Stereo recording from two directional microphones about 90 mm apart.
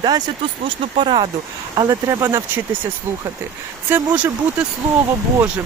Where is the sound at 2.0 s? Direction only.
30° right (ahead or behind).